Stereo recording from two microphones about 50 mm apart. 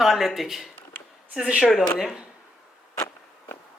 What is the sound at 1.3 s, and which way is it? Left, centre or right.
Speech, centre.